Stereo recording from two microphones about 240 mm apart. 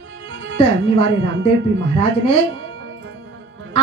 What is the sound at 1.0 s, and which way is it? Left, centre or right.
Speech, right.